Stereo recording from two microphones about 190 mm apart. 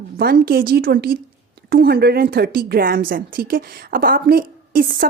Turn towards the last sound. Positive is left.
turn(degrees=-45)  # may be behind; listen again after turning